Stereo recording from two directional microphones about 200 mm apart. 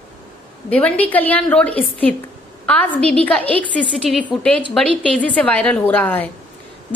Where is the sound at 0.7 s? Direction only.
5° left (ahead or behind).